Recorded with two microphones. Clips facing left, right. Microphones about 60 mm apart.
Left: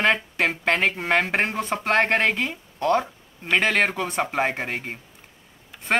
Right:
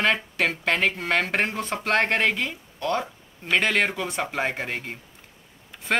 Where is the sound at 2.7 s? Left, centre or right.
Left.